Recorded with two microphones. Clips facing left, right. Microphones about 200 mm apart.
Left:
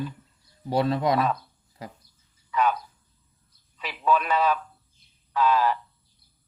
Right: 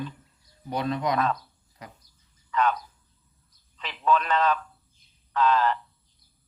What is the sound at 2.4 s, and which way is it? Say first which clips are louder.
A man's voice: left 1 dB; 10° left (ahead or behind).